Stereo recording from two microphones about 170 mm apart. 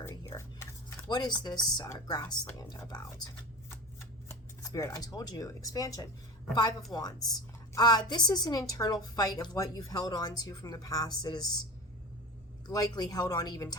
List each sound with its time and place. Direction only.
0.0 s speech: 20° left (ahead or behind)
4.3 s a woman's voice: 15° left (ahead or behind)
12.6 s a woman's voice: 20° left (ahead or behind)